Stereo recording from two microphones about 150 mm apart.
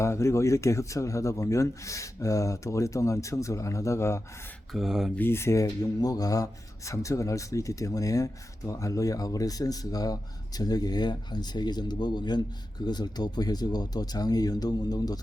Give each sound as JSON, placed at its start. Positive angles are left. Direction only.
{"t": 0.0, "sound": "speech", "side_deg": 20}
{"t": 4.7, "sound": "speech", "side_deg": 0}
{"t": 5.1, "sound": "speech", "side_deg": 15}